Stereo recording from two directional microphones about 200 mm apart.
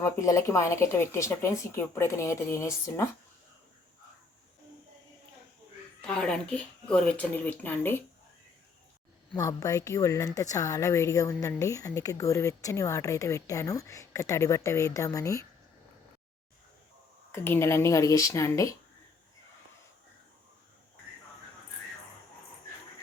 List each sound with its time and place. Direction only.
0.0 s a woman's voice: 15° left (ahead or behind)
6.0 s speech: 5° left (ahead or behind)
9.3 s a woman's voice: 15° left (ahead or behind)
17.3 s a woman's voice: 10° left (ahead or behind)